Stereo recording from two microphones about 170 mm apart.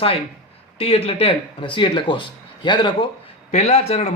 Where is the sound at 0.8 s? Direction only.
35° left (ahead or behind).